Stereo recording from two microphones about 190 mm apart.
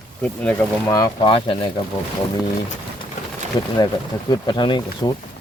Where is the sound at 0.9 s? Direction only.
20° left (ahead or behind).